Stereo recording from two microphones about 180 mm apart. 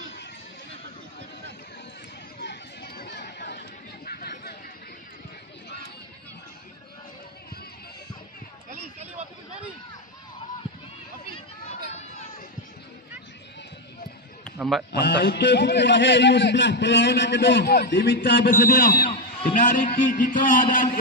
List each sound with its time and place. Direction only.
2.4 s chatter: 65° left (ahead or behind)
11.9 s run: 40° left (ahead or behind)
14.4 s a sound: centre (ahead or behind)
14.9 s a man's voice: 70° left (ahead or behind)
18.5 s a man's voice: 50° left (ahead or behind)
19.0 s a man's voice: 40° left (ahead or behind)